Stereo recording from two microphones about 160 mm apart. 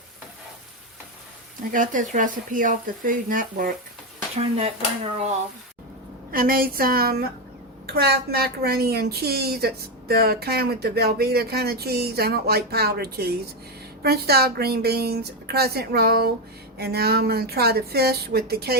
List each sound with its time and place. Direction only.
1.7 s speech: 55° right (ahead or behind)
4.4 s speech: 40° right (ahead or behind)
6.3 s a woman's voice: 65° right (ahead or behind)
7.9 s a woman's voice: 80° right